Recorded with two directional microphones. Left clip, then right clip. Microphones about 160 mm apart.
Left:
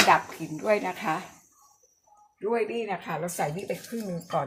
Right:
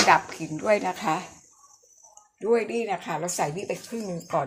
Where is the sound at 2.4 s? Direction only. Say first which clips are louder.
Right 4 dB; 20° right (ahead or behind).